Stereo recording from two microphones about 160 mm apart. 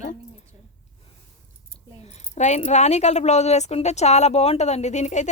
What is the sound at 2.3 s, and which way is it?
Speech, 45° left (ahead or behind).